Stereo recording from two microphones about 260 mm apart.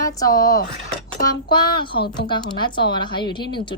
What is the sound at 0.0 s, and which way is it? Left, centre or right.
A woman's voice, centre.